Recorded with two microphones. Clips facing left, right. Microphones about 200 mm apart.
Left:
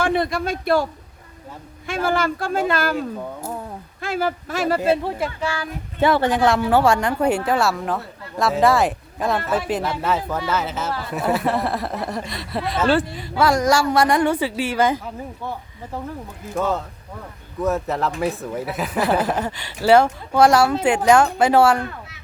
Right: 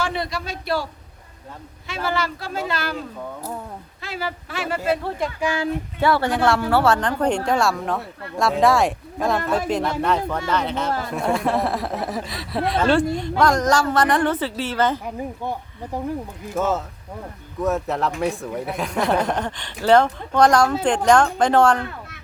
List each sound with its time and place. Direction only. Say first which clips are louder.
0.0 s speech: left 5 dB; 55° left (ahead or behind)
1.9 s speech: left 4 dB; 50° left (ahead or behind)
4.0 s speech: left 7 dB; 50° left (ahead or behind)
4.8 s speech: left 3 dB; 20° left (ahead or behind)
5.4 s speech: right 2 dB; 15° right (ahead or behind)
6.0 s a woman's voice: left 3 dB; 20° left (ahead or behind)
16.6 s a woman's voice: even; centre (ahead or behind)